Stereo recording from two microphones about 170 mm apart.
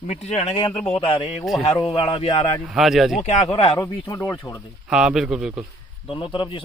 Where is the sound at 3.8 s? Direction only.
20° left (ahead or behind).